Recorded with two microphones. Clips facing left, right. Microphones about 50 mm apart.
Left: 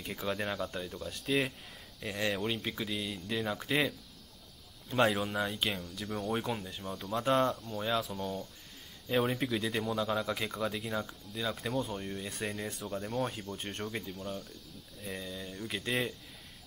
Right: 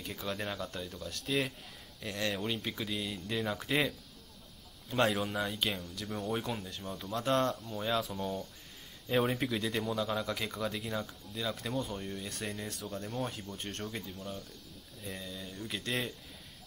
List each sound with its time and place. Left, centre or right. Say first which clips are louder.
0.0 s speech: left 3 dB; centre